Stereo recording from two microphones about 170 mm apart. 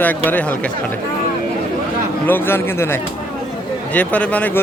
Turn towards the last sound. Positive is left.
turn(degrees=10)  # may be behind; listen again after turning